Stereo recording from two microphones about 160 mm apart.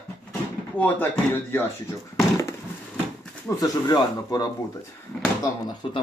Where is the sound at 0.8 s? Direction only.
10° left (ahead or behind).